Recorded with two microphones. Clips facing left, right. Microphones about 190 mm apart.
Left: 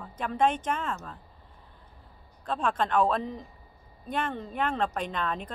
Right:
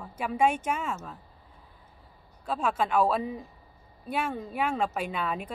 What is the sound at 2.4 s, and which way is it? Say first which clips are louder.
Speech: even; 5° right (ahead or behind).